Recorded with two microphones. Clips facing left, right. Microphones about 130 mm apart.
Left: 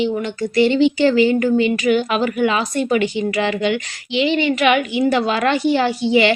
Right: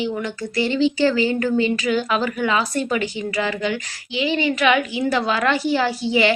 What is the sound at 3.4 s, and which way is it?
Speech, 70° left (ahead or behind).